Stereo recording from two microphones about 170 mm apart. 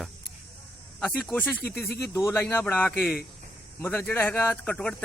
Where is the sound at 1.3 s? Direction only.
10° left (ahead or behind).